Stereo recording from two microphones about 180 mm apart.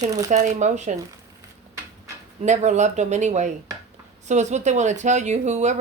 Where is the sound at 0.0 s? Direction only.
20° right (ahead or behind).